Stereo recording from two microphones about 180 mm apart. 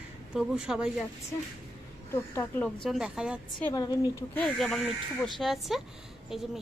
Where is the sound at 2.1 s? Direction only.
15° left (ahead or behind).